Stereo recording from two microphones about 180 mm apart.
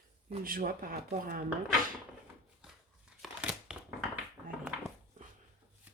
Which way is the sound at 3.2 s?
5° right (ahead or behind).